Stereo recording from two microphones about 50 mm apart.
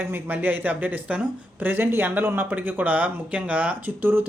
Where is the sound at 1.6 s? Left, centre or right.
Right.